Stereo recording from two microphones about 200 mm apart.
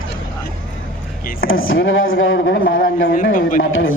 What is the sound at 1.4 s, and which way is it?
Speech, 90° left.